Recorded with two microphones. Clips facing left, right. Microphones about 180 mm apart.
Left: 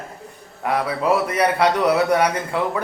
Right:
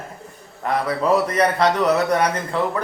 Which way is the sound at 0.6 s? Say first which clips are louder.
Even; 10° left (ahead or behind).